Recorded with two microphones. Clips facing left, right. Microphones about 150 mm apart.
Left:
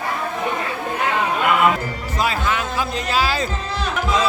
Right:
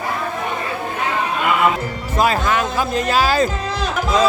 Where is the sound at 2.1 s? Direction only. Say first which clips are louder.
Right 5 dB; 45° right (ahead or behind).